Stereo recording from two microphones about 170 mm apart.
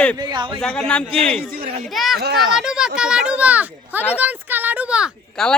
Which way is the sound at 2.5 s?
5° right (ahead or behind).